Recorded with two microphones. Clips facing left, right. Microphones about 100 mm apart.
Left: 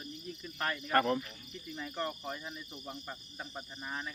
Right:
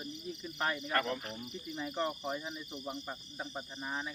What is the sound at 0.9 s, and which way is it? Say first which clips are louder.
Speech: left 9 dB; 40° left (ahead or behind).